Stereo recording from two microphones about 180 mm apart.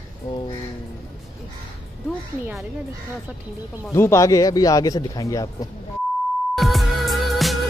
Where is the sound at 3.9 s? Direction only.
15° left (ahead or behind).